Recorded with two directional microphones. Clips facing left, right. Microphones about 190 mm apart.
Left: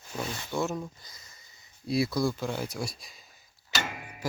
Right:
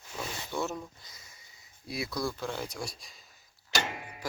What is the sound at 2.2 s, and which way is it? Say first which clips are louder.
Speech: left 5 dB; 25° left (ahead or behind).